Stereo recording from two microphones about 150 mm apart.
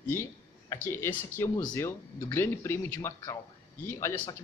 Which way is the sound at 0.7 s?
15° left (ahead or behind).